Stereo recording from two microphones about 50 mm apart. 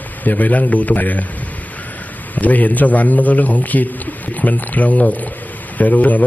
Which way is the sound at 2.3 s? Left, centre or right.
Left.